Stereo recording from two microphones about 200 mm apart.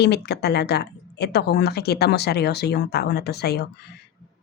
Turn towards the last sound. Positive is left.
turn(degrees=55)  # may be behind; listen again after turning